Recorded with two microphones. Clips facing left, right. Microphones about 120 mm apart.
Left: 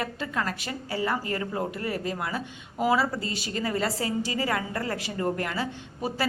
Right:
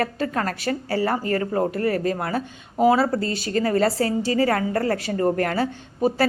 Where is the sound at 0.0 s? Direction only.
45° right (ahead or behind).